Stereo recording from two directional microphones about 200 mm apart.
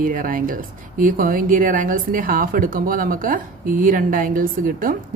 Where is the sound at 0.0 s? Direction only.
45° right (ahead or behind).